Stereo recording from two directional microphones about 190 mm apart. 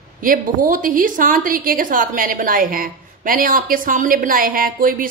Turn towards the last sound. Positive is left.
turn(degrees=-45)  # may be behind; listen again after turning